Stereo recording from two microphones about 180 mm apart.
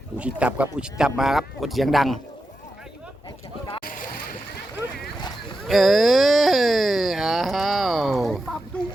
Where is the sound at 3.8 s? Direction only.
50° left (ahead or behind).